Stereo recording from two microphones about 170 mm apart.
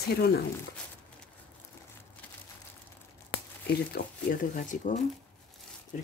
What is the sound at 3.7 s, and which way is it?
Speech, 55° left (ahead or behind).